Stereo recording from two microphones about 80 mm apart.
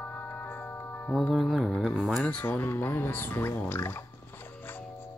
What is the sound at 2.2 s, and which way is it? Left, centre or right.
Music, centre.